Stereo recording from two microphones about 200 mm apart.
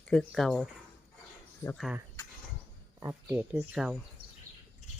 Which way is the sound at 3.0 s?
10° right (ahead or behind).